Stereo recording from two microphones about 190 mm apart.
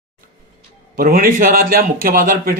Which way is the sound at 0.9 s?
50° right (ahead or behind).